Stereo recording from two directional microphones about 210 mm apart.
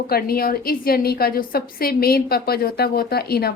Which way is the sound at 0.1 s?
45° left (ahead or behind).